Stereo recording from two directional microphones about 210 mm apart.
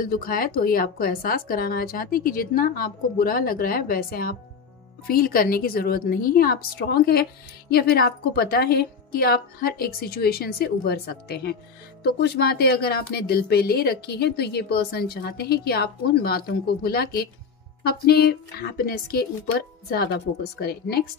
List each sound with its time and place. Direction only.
0.0 s speech: 45° left (ahead or behind)